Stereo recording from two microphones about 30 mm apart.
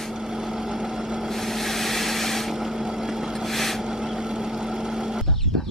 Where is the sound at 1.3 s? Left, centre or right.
Centre.